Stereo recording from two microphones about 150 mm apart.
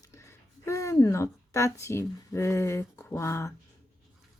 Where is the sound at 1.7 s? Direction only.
20° left (ahead or behind).